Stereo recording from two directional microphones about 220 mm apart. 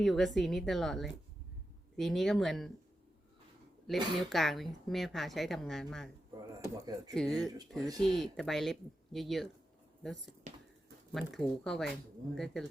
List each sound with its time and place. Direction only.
0.0 s a woman's voice: centre (ahead or behind)
3.8 s a woman's voice: centre (ahead or behind)
7.1 s a woman's voice: centre (ahead or behind)
10.5 s speech: 35° right (ahead or behind)
11.1 s a woman's voice: centre (ahead or behind)